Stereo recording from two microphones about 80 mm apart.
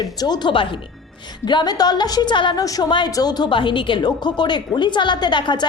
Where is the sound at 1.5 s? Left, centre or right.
Left.